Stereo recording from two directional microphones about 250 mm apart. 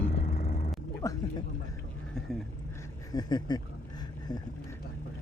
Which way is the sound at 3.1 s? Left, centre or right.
Centre.